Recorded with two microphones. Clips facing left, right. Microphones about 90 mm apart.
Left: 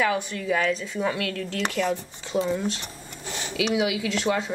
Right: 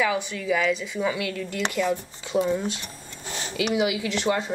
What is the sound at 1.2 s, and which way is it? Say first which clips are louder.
Speech: even; 55° left (ahead or behind).